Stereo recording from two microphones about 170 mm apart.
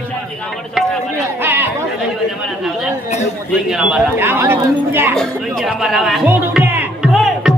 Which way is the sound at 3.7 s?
5° right (ahead or behind).